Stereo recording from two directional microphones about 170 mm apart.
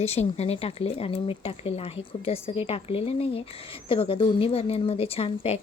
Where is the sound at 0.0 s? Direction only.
40° left (ahead or behind).